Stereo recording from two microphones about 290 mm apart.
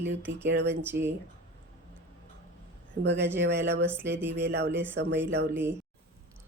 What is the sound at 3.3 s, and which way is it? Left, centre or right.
A woman's voice, right.